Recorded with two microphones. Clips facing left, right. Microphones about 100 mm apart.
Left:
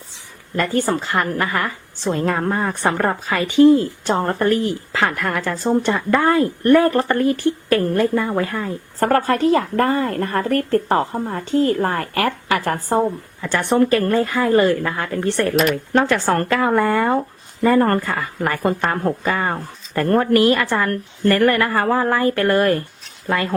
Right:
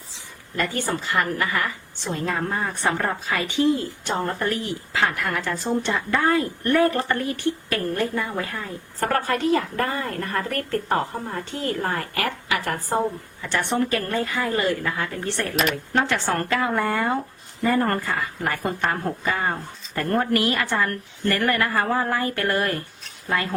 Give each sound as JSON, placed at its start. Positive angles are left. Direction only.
{"t": 0.5, "sound": "a woman's voice", "side_deg": 40}
{"t": 18.2, "sound": "a woman's voice", "side_deg": 60}
{"t": 20.0, "sound": "a woman's voice", "side_deg": 55}
{"t": 21.7, "sound": "a woman's voice", "side_deg": 75}